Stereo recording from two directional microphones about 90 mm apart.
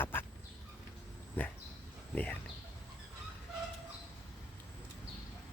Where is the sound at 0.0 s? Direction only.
25° left (ahead or behind).